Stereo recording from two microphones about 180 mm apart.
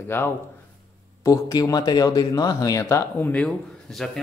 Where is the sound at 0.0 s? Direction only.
10° left (ahead or behind).